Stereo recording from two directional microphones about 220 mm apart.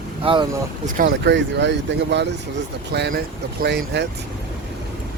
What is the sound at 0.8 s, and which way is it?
Speech, 40° right (ahead or behind).